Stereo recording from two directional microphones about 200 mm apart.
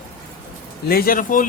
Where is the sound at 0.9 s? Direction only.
45° left (ahead or behind).